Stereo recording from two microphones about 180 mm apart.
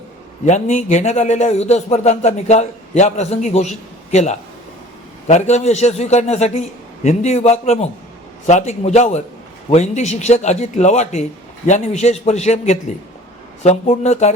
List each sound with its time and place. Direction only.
0.4 s a man's voice: 40° left (ahead or behind)